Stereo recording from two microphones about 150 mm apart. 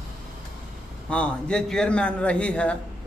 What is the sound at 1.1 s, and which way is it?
A man's voice, 5° left (ahead or behind).